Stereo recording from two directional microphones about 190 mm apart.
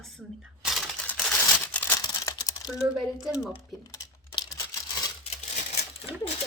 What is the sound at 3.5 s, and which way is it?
Crumpling, 15° left (ahead or behind).